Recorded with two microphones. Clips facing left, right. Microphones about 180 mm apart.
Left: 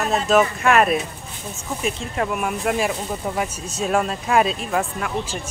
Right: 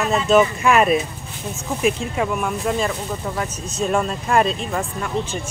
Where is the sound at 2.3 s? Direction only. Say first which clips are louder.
Right 1 dB; 10° left (ahead or behind).